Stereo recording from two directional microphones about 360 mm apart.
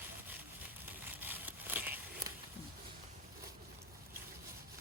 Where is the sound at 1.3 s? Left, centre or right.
Centre.